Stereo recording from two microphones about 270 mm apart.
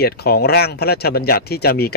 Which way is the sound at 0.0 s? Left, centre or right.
Left.